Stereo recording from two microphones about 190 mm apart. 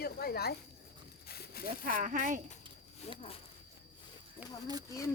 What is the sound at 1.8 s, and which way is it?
Speech, 45° right (ahead or behind).